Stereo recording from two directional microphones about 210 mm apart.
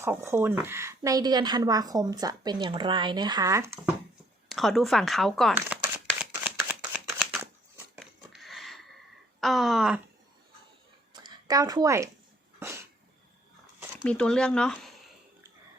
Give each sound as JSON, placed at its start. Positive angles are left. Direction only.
{"t": 0.0, "sound": "a woman's voice", "side_deg": -10}
{"t": 4.4, "sound": "speech", "side_deg": 0}
{"t": 6.4, "sound": "a sound", "side_deg": -5}
{"t": 9.4, "sound": "speech", "side_deg": 0}
{"t": 11.1, "sound": "a sound", "side_deg": -20}
{"t": 12.5, "sound": "dog", "side_deg": -10}
{"t": 14.0, "sound": "speech", "side_deg": 5}